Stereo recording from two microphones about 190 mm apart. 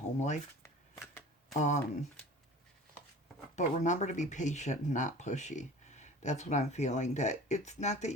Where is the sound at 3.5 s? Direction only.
40° left (ahead or behind).